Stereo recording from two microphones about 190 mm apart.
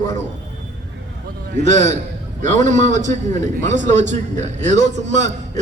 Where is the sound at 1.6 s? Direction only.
40° right (ahead or behind).